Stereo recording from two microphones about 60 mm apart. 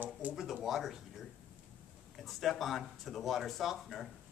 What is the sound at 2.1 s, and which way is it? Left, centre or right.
Speech, centre.